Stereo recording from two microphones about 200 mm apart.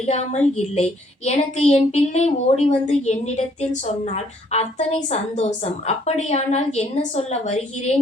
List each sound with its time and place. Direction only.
0.1 s speech: 35° left (ahead or behind)